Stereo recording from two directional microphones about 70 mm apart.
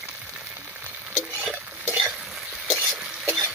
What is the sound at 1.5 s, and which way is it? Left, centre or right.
Stir, right.